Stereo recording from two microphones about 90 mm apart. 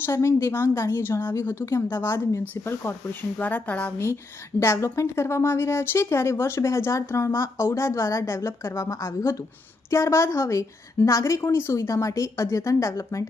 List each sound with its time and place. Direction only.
0.0 s a woman's voice: 30° left (ahead or behind)
3.3 s a woman's voice: 20° left (ahead or behind)
3.9 s speech: 30° left (ahead or behind)